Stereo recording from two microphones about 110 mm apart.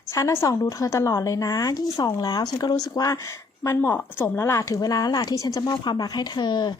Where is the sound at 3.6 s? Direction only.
20° left (ahead or behind); by 6.8 s 40° left (ahead or behind).